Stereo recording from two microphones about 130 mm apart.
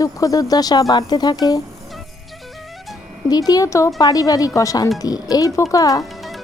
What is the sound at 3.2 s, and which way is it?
Speech, 30° left (ahead or behind).